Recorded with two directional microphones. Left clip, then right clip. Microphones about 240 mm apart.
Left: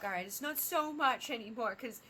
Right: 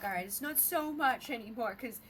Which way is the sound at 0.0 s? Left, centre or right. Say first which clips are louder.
Right 1 dB; centre.